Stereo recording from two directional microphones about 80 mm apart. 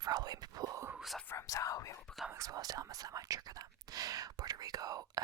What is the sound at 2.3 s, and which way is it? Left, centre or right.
Whispering, right.